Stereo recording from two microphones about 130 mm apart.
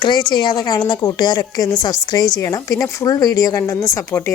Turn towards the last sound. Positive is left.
turn(degrees=20)  # may be behind; listen again after turning